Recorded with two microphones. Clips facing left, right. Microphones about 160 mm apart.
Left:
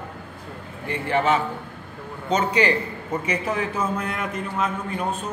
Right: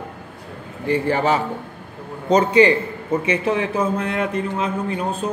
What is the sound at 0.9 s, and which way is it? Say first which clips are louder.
A man's voice: right 3 dB; 35° right (ahead or behind).